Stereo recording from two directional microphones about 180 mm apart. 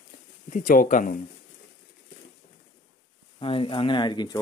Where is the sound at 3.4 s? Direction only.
30° left (ahead or behind).